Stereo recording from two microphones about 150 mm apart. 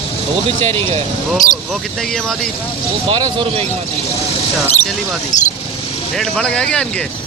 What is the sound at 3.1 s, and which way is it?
Speech, 35° right (ahead or behind).